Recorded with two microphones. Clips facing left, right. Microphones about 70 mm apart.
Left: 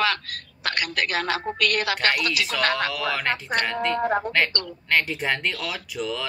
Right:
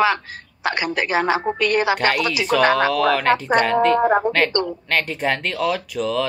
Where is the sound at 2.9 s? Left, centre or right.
Centre.